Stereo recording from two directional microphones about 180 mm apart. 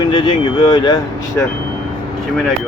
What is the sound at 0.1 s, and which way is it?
Speech, 25° left (ahead or behind).